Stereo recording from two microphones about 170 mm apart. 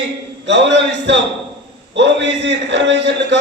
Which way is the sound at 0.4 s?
90° right.